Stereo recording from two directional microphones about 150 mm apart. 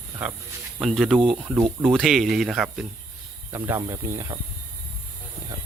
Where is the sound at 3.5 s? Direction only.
15° right (ahead or behind).